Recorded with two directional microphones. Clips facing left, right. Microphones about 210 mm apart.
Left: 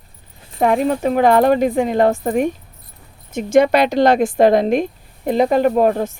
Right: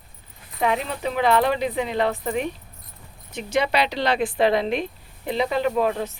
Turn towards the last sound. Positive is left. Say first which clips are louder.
# left 7 dB
turn(degrees=50)  # may be behind; listen again after turning